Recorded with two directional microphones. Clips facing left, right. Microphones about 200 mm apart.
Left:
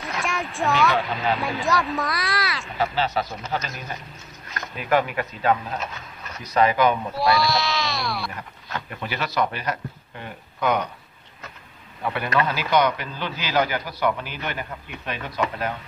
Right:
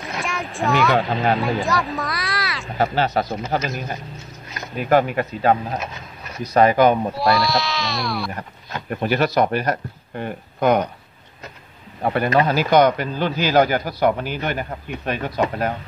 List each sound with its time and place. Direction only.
0.2 s speech: centre (ahead or behind)
0.9 s speech: 30° right (ahead or behind)
1.6 s speech: centre (ahead or behind)
2.8 s a man's voice: 45° right (ahead or behind)
4.7 s speech: 40° right (ahead or behind)
7.2 s speech: centre (ahead or behind)
8.9 s a man's voice: 45° right (ahead or behind)
12.0 s a man's voice: 45° right (ahead or behind)